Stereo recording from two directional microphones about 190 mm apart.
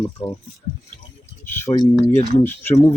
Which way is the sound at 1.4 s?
10° left (ahead or behind).